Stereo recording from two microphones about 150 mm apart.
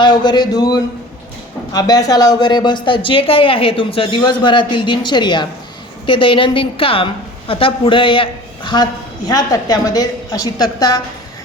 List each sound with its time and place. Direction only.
0.0 s a woman's voice: 30° left (ahead or behind)